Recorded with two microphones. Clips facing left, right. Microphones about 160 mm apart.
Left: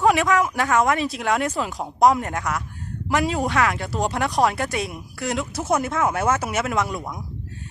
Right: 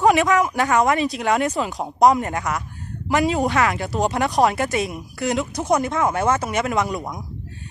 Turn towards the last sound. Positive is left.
turn(degrees=-20)  # may be behind; listen again after turning